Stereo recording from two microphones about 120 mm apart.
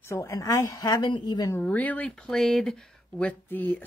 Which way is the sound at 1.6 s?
15° left (ahead or behind).